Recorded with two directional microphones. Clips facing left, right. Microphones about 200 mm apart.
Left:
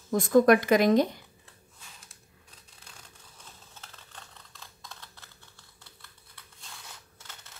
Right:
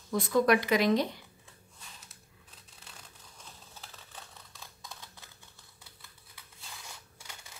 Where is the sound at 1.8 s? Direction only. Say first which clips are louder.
Right 1 dB; 5° right (ahead or behind).